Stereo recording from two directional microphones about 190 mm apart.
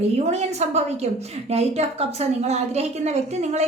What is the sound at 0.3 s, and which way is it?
A woman's voice, 35° right (ahead or behind).